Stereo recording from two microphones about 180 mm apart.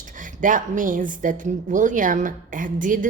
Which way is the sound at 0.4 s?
50° right (ahead or behind).